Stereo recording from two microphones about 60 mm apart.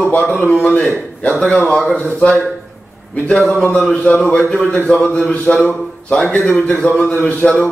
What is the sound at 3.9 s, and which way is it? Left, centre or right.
A man's voice, left.